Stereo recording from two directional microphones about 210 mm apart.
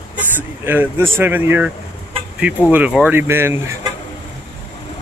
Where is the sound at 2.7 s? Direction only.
5° right (ahead or behind).